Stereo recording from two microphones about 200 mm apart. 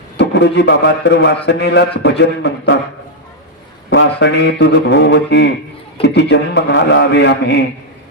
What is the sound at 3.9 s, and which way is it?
A man's voice, 60° left (ahead or behind).